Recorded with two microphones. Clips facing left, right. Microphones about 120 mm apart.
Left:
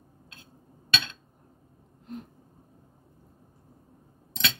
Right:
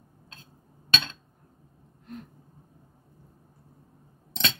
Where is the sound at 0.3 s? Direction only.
35° right (ahead or behind).